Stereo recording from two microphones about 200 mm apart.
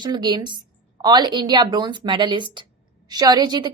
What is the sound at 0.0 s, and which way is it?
A woman's voice, 20° right (ahead or behind).